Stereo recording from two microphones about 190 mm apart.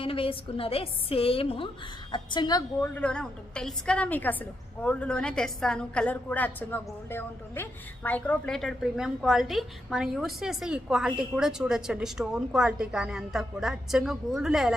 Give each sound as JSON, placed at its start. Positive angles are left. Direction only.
{"t": 0.0, "sound": "a woman's voice", "side_deg": 30}
{"t": 2.9, "sound": "a woman's voice", "side_deg": 5}